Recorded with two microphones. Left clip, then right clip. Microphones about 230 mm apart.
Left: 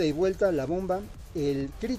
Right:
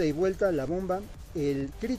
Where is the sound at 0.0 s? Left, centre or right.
Centre.